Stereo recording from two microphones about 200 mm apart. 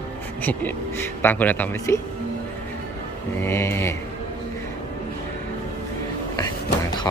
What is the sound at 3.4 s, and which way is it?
Speech, 10° left (ahead or behind).